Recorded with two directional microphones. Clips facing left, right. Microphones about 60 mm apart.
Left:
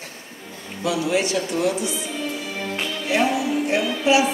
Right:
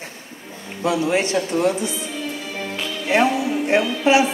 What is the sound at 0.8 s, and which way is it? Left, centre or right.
Speech, right.